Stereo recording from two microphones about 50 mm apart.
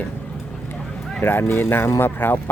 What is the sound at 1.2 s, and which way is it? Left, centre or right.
Speech, left.